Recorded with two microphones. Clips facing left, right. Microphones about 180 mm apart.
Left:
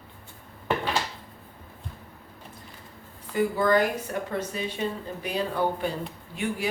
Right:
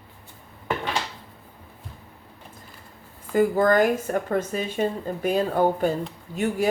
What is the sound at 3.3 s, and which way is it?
Speech, 45° right (ahead or behind).